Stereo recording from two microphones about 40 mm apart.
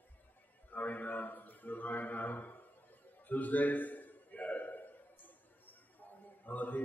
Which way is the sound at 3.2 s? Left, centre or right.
Left.